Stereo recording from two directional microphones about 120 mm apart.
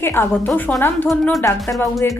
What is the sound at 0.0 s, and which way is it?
Speech, 20° left (ahead or behind).